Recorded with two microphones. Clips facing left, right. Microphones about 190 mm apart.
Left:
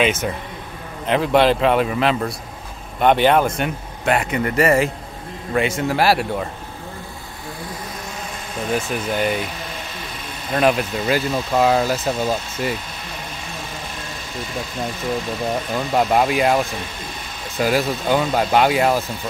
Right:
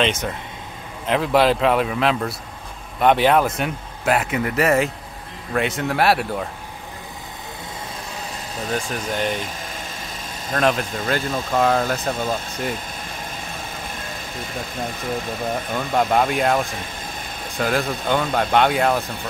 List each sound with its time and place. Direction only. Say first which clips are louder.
0.0 s speech: left 2 dB; 5° left (ahead or behind)
8.7 s speech: left 3 dB; 5° left (ahead or behind)
10.5 s speech: left 3 dB; 5° left (ahead or behind)
14.3 s speech: left 4 dB; 50° right (ahead or behind)
15.5 s speech: left 2 dB; centre (ahead or behind)